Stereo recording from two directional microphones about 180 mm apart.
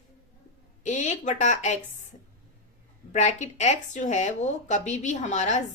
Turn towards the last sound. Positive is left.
turn(degrees=40)  # may be behind; listen again after turning